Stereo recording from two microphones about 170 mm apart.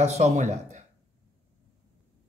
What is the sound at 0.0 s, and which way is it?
Speech, 40° right (ahead or behind).